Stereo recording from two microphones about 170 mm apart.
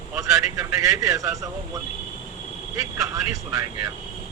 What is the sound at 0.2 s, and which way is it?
A man's voice, 20° right (ahead or behind).